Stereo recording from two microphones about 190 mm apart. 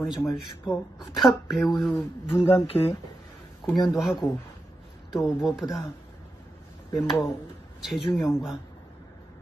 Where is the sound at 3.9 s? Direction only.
Centre (ahead or behind).